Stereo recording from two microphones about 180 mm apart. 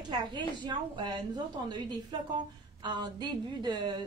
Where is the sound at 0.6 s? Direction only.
25° right (ahead or behind).